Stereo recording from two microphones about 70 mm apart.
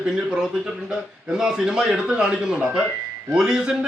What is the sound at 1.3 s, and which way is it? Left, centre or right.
A man's voice, centre.